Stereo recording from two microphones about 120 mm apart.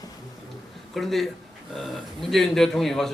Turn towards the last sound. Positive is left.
turn(degrees=5)  # may be behind; listen again after turning